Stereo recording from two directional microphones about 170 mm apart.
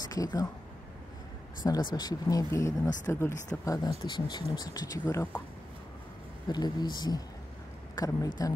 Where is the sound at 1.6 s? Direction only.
25° left (ahead or behind).